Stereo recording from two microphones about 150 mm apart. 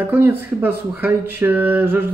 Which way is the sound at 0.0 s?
15° right (ahead or behind).